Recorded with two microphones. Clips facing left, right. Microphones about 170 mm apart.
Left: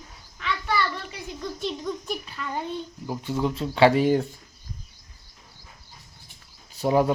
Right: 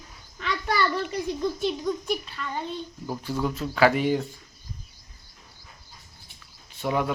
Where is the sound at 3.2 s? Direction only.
25° left (ahead or behind).